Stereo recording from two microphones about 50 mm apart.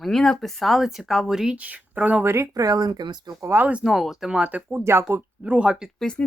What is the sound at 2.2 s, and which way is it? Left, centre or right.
Speech, right.